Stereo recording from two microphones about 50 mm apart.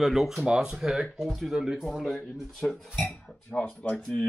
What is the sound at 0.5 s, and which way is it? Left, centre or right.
Speech, centre.